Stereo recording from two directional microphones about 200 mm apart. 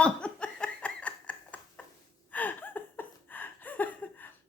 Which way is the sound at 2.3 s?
10° left (ahead or behind).